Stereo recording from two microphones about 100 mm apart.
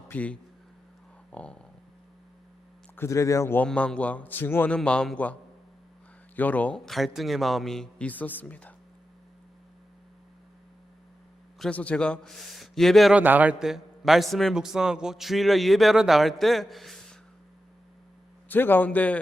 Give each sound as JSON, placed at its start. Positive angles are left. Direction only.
{"t": 0.1, "sound": "a man's voice", "side_deg": 15}
{"t": 1.3, "sound": "a sound", "side_deg": 10}
{"t": 2.9, "sound": "speech", "side_deg": 25}
{"t": 3.6, "sound": "a man's voice", "side_deg": 10}
{"t": 4.7, "sound": "a man's voice", "side_deg": 10}
{"t": 6.8, "sound": "a man's voice", "side_deg": 0}
{"t": 11.7, "sound": "a man's voice", "side_deg": 15}
{"t": 13.1, "sound": "a man's voice", "side_deg": -15}
{"t": 18.4, "sound": "a man's voice", "side_deg": 20}